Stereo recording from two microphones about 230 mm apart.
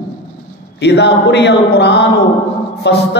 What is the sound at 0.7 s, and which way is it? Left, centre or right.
A man's voice, left.